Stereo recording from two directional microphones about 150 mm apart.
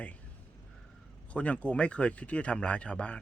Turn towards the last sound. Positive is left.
turn(degrees=10)  # may be behind; listen again after turning